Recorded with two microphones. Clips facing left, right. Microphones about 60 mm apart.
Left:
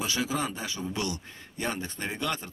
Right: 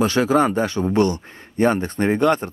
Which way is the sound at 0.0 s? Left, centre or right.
Right.